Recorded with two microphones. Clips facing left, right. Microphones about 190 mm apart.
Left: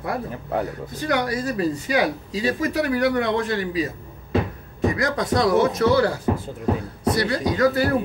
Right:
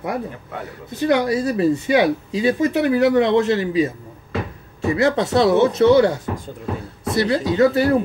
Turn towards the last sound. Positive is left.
turn(degrees=-25)  # may be behind; listen again after turning